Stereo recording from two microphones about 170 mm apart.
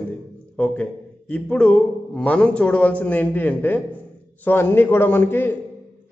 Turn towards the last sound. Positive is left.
turn(degrees=15)  # may be behind; listen again after turning